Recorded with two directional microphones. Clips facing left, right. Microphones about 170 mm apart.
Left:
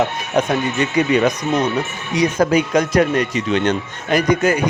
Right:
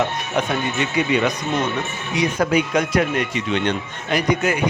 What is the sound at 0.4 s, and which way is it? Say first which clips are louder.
Speech: left 5 dB; 40° left (ahead or behind).